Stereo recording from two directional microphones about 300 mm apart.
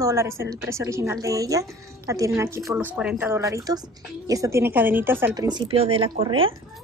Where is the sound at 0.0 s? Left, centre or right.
Centre.